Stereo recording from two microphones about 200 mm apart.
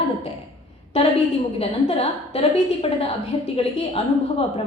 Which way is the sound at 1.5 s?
30° left (ahead or behind).